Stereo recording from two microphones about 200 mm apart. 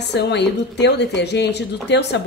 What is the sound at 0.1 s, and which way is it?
A woman's voice, 60° left (ahead or behind).